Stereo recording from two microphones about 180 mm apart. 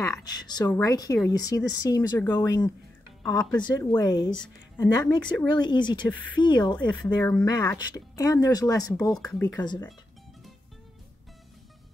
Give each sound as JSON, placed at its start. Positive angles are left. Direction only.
{"t": 0.0, "sound": "speech", "side_deg": 20}
{"t": 6.0, "sound": "speech", "side_deg": 10}
{"t": 6.3, "sound": "speech", "side_deg": 25}
{"t": 9.1, "sound": "speech", "side_deg": 5}